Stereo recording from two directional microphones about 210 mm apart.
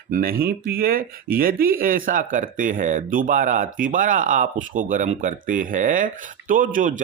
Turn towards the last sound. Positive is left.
turn(degrees=-40)  # may be behind; listen again after turning